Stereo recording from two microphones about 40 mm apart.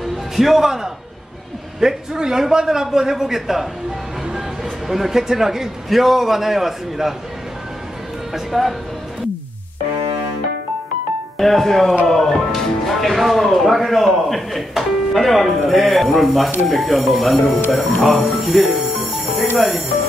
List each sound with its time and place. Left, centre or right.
0.4 s a man's voice: centre
1.8 s a man's voice: centre
4.8 s speech: centre
8.3 s speech: centre
11.3 s speech: centre
18.0 s music: centre
19.5 s speech: centre